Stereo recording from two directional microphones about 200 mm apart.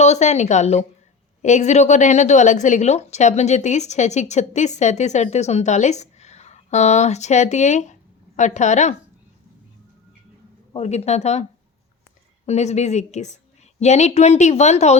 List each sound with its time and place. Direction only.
0.0 s a woman's voice: 35° left (ahead or behind)
10.8 s a woman's voice: 35° left (ahead or behind)
12.5 s a woman's voice: 35° left (ahead or behind)